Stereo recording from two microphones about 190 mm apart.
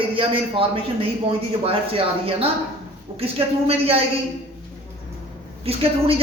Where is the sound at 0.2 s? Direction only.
30° right (ahead or behind).